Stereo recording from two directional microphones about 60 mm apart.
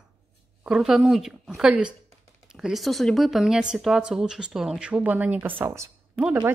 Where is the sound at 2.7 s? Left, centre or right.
Centre.